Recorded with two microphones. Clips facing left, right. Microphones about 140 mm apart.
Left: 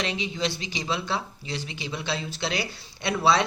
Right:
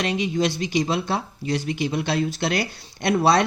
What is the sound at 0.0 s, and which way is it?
Speech, 50° right (ahead or behind).